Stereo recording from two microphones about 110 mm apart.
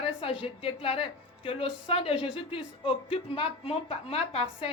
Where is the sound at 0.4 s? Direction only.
55° left (ahead or behind).